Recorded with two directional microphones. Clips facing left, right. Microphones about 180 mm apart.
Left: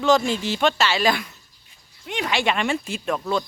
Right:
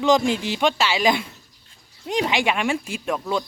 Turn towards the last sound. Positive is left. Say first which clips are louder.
# even
turn(degrees=-10)  # may be behind; listen again after turning